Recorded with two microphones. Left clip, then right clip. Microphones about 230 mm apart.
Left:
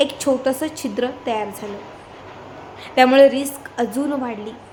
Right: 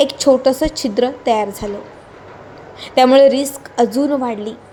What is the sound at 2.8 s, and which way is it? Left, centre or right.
A woman's voice, centre.